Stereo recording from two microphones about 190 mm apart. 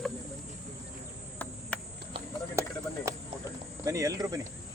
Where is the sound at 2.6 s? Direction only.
15° right (ahead or behind).